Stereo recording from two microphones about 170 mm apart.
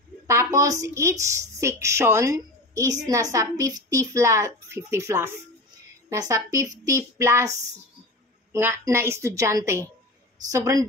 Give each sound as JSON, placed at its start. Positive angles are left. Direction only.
{"t": 0.3, "sound": "a woman's voice", "side_deg": -15}